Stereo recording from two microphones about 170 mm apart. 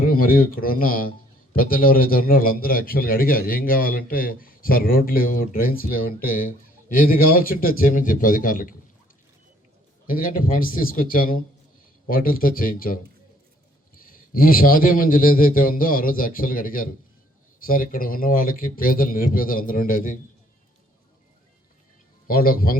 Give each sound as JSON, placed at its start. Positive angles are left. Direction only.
{"t": 0.1, "sound": "a man's voice", "side_deg": 60}
{"t": 10.1, "sound": "a man's voice", "side_deg": 55}
{"t": 22.3, "sound": "a man's voice", "side_deg": 60}